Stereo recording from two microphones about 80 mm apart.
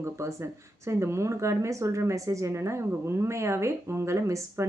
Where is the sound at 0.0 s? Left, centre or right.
Right.